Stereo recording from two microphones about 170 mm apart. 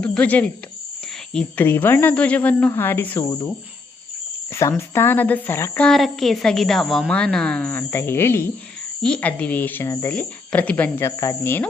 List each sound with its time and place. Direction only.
0.0 s a woman's voice: 10° left (ahead or behind)
4.6 s a woman's voice: 15° left (ahead or behind)